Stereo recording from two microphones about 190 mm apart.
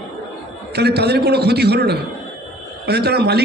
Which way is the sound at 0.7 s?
60° right (ahead or behind).